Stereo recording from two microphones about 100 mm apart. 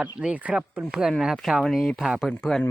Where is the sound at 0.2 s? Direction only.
15° right (ahead or behind).